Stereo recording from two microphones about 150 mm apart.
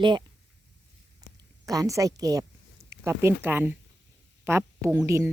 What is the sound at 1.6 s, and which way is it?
A woman's voice, 25° right (ahead or behind).